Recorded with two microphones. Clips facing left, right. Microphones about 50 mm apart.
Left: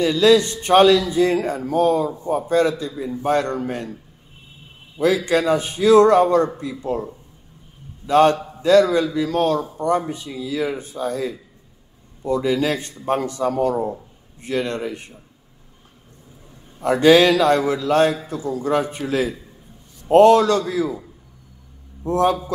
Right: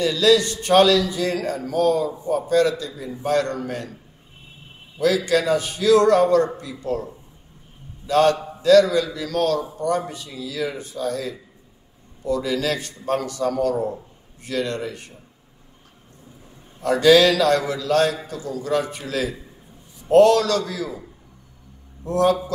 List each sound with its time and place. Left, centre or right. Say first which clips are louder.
0.0 s a man's voice: left 2 dB; left
4.9 s a man's voice: left 1 dB; left
8.1 s a man's voice: left 3 dB; left
16.8 s a man's voice: left 1 dB; left
22.0 s a man's voice: left 1 dB; left